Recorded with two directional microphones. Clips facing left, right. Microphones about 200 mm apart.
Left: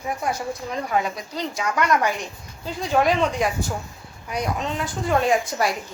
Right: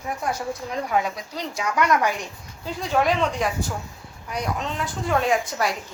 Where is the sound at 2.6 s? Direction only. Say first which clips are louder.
Left 2 dB; centre (ahead or behind).